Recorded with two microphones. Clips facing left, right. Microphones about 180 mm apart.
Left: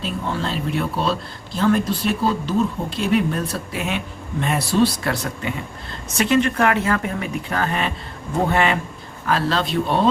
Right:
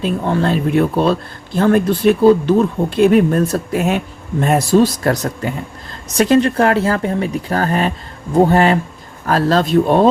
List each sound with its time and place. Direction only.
0.0 s speech: 55° right (ahead or behind)